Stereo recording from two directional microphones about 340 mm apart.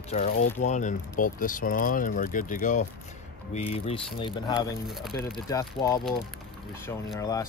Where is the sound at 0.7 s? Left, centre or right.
Left.